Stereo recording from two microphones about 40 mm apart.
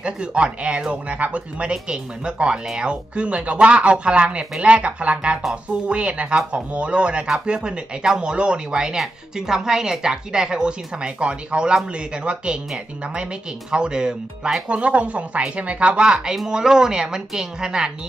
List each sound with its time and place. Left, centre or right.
0.0 s speech: right
1.0 s speech: right
1.7 s speech: right
14.7 s a woman's voice: right